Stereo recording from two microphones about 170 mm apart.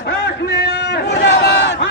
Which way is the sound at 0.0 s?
75° left (ahead or behind).